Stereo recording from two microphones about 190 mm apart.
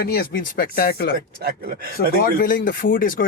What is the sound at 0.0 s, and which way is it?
A man's voice, 55° left (ahead or behind).